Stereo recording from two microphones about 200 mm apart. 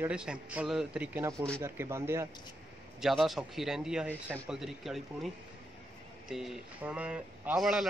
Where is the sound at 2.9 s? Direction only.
Centre (ahead or behind).